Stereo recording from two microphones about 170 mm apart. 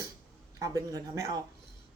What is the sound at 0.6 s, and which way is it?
Speech, 20° right (ahead or behind).